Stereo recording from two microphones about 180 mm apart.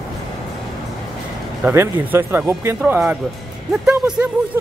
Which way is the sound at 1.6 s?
10° right (ahead or behind).